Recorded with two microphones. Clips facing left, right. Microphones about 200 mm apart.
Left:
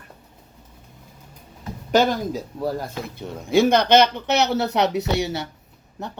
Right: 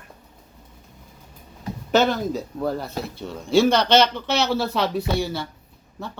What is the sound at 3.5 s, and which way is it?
Speech, 55° left (ahead or behind).